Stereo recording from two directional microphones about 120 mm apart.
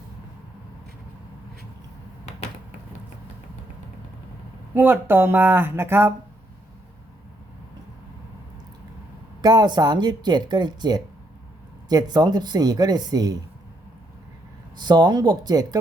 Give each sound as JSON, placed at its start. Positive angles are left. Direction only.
{"t": 4.7, "sound": "speech", "side_deg": -15}
{"t": 9.4, "sound": "speech", "side_deg": -35}
{"t": 14.8, "sound": "speech", "side_deg": -35}